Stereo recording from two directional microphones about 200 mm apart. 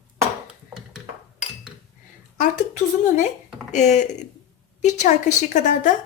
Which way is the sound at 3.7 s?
35° left (ahead or behind).